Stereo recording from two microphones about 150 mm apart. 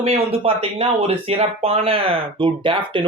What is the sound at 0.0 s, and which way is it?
Speech, 40° right (ahead or behind).